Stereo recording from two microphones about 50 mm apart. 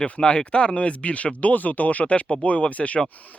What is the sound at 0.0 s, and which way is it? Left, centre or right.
Speech, centre.